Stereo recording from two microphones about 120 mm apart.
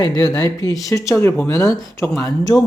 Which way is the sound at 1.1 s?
15° left (ahead or behind).